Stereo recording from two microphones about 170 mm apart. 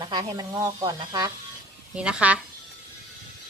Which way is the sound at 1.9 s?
5° right (ahead or behind).